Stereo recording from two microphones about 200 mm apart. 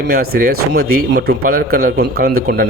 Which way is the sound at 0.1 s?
50° right (ahead or behind).